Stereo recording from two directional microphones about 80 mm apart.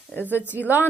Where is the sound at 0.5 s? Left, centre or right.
Right.